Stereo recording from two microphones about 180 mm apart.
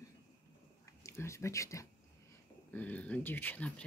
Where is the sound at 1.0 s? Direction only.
15° left (ahead or behind).